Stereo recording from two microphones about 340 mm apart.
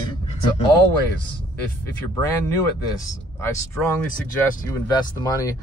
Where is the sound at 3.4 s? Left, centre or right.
Centre.